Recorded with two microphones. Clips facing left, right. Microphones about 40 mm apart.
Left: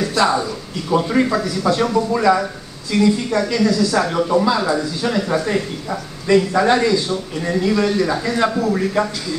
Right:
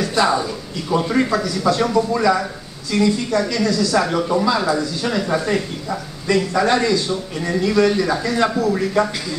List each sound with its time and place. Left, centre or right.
0.2 s speech: centre
3.9 s speech: centre